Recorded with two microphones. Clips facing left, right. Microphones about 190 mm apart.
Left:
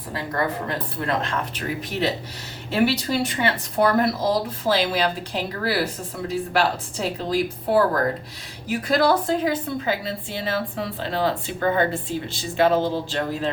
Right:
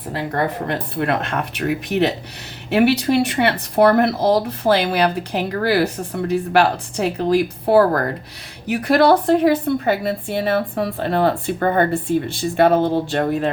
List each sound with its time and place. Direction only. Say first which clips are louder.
0.7 s a woman's voice: right 5 dB; 65° right (ahead or behind)